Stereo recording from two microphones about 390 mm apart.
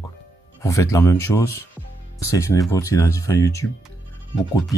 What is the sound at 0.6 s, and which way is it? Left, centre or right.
Speech, centre.